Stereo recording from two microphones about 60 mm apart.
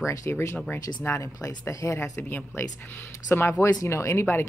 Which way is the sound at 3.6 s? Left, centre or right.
Left.